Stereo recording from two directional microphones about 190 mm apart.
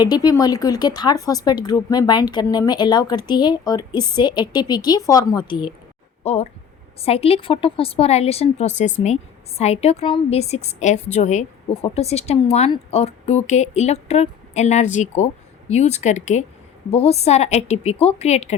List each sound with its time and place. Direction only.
0.0 s a woman's voice: 20° left (ahead or behind)